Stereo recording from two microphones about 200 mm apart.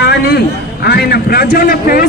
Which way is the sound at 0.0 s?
55° left (ahead or behind).